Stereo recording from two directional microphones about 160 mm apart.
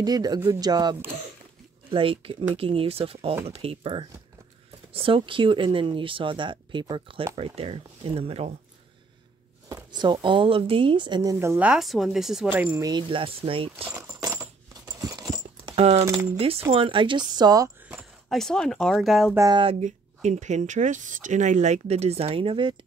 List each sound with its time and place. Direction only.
0.0 s speech: 25° right (ahead or behind); by 8.5 s 40° right (ahead or behind)
9.7 s speech: 25° right (ahead or behind)
11.3 s speech: 10° right (ahead or behind)
12.5 s speech: 20° right (ahead or behind)
14.2 s coin: 20° right (ahead or behind)
15.7 s speech: 40° right (ahead or behind); by 17.6 s 25° right (ahead or behind)
17.8 s speech: 5° right (ahead or behind)
19.3 s speech: 20° right (ahead or behind)
19.6 s speech: 40° right (ahead or behind)